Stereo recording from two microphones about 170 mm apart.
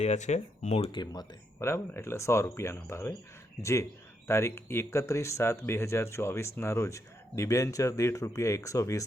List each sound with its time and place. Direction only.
0.0 s speech: 40° left (ahead or behind)
0.9 s speech: 25° left (ahead or behind)